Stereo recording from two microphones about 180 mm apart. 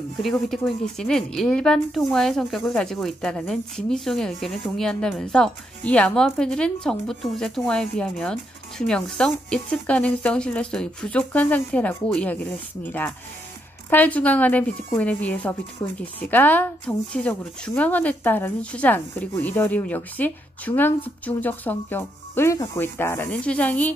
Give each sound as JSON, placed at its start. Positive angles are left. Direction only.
{"t": 0.2, "sound": "a woman's voice", "side_deg": 0}
{"t": 15.8, "sound": "speech", "side_deg": 25}
{"t": 16.2, "sound": "speech", "side_deg": 10}